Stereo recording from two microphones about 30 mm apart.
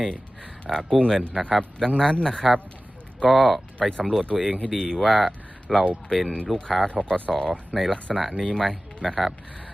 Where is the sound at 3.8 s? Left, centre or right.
Left.